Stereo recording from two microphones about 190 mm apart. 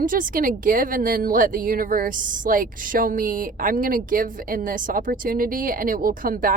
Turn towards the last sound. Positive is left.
turn(degrees=-45)  # may be behind; listen again after turning